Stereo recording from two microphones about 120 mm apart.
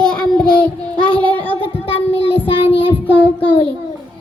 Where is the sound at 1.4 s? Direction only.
50° left (ahead or behind).